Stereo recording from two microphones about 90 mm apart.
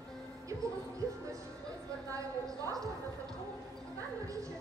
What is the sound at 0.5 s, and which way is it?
Music, 35° right (ahead or behind).